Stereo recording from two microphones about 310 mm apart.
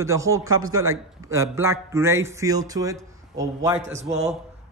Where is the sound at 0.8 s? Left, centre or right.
Centre.